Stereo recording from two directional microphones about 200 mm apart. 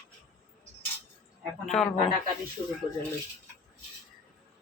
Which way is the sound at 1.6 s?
Centre (ahead or behind).